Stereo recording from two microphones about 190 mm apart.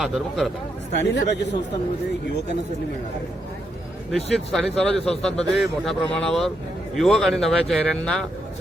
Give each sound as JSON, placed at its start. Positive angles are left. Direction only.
{"t": 0.0, "sound": "a man's voice", "side_deg": 0}
{"t": 0.9, "sound": "speech", "side_deg": 65}
{"t": 4.1, "sound": "a man's voice", "side_deg": 0}